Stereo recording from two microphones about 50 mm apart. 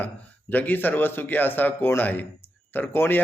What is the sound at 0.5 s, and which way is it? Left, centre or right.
Speech, left.